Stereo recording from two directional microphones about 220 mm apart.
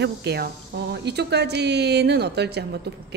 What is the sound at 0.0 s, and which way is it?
A woman's voice, 50° right (ahead or behind).